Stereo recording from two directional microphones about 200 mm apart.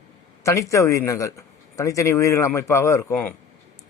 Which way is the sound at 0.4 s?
15° left (ahead or behind).